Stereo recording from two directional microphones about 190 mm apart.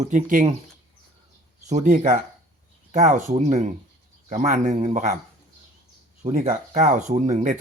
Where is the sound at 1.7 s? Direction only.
40° right (ahead or behind).